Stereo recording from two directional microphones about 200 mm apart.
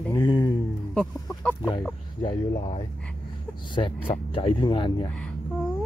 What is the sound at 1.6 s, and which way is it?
Speech, 15° left (ahead or behind).